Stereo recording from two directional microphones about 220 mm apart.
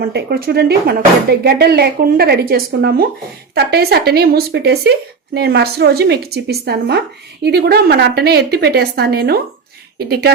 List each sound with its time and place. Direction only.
0.0 s speech: 45° right (ahead or behind)